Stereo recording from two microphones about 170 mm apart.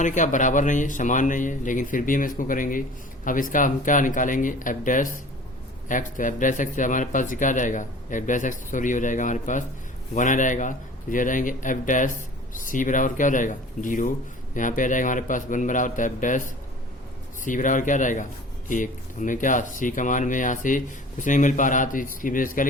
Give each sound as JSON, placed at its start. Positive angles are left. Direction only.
{"t": 0.0, "sound": "speech", "side_deg": 45}
{"t": 17.4, "sound": "speech", "side_deg": 50}